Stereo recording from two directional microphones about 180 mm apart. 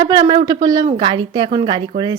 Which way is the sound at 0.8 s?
30° right (ahead or behind).